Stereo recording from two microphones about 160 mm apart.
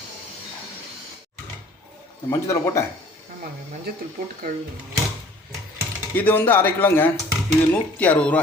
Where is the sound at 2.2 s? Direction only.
20° left (ahead or behind).